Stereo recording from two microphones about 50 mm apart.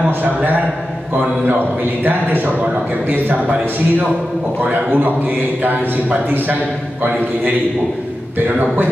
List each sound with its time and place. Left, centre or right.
0.2 s a man's voice: right
2.0 s a man's voice: right
4.6 s a man's voice: right